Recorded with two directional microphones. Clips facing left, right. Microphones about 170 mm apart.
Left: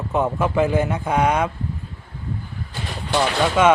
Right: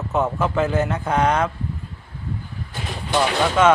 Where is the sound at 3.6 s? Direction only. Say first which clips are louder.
Even; 10° left (ahead or behind).